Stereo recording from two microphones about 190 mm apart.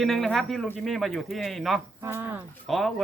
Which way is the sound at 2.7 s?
Centre (ahead or behind).